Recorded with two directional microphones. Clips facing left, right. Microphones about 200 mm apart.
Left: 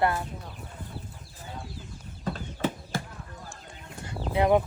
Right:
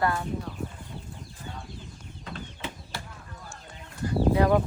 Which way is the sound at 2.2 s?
45° left (ahead or behind).